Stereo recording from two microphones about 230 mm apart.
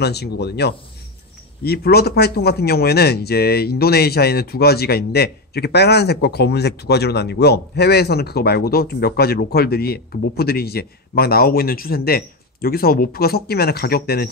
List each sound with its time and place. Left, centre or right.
0.0 s a man's voice: left